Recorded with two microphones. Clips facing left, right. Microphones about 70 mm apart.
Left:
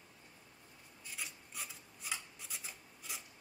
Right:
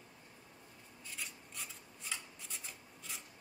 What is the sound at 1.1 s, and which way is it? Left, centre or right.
Rub, centre.